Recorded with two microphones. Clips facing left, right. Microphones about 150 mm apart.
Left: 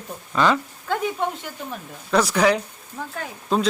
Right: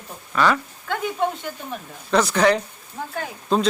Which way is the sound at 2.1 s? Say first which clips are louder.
Right 1 dB; 10° left (ahead or behind).